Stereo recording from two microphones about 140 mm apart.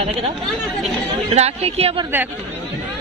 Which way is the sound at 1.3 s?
50° right (ahead or behind).